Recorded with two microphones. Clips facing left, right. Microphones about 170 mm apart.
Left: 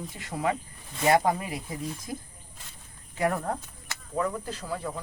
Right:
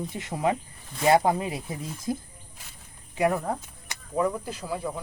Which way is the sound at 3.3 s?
10° right (ahead or behind).